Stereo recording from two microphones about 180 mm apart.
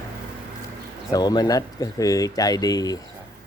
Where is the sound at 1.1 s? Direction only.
20° left (ahead or behind).